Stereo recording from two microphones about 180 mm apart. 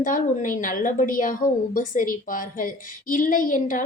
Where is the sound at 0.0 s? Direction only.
50° left (ahead or behind).